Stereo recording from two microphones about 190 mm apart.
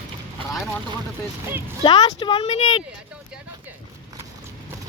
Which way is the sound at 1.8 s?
25° left (ahead or behind).